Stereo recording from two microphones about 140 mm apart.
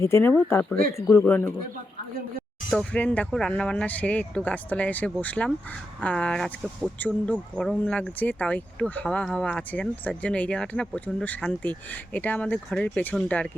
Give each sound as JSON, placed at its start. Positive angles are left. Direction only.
{"t": 0.0, "sound": "speech", "side_deg": 15}
{"t": 2.6, "sound": "speech", "side_deg": 10}